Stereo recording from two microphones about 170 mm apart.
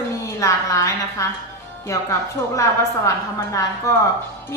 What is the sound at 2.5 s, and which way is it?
A woman's voice, 20° left (ahead or behind).